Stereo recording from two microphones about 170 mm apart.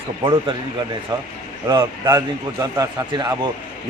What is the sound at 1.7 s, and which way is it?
A man's voice, 25° right (ahead or behind).